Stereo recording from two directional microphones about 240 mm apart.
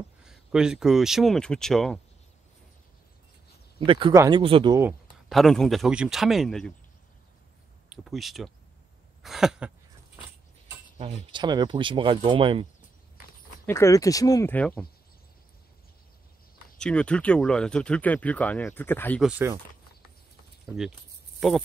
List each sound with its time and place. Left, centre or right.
0.2 s speech: centre
3.8 s speech: right
5.3 s speech: centre
7.9 s speech: centre
11.0 s speech: right
13.7 s speech: centre
16.7 s speech: centre
19.2 s speech: centre
20.6 s speech: centre